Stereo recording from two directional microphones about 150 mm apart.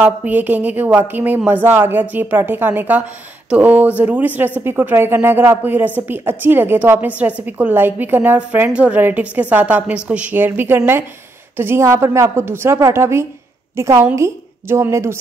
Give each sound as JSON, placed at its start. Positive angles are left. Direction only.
{"t": 0.0, "sound": "speech", "side_deg": -10}